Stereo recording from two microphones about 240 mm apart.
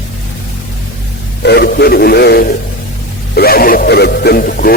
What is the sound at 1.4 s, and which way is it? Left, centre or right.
Speech, left.